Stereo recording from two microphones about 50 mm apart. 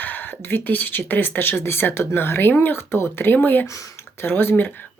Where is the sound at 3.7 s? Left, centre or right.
Left.